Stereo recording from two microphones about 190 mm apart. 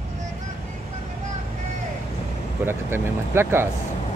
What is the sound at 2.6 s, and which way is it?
Speech, 10° right (ahead or behind).